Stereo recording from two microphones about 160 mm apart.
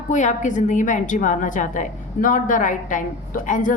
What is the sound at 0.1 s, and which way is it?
A woman's voice, 50° left (ahead or behind).